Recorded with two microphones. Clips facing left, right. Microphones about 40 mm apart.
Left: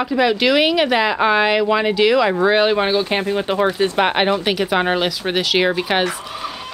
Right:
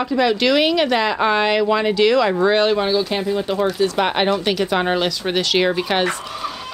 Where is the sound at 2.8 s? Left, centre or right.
Left; by 6.1 s centre.